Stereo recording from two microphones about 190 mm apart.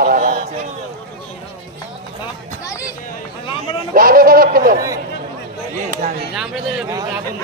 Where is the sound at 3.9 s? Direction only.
50° right (ahead or behind).